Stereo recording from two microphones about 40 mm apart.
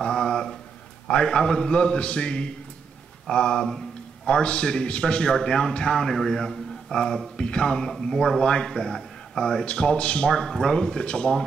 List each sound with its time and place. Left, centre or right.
0.0 s a sound: centre
1.0 s a man's voice: left
6.0 s a man's voice: centre
9.7 s a man's voice: left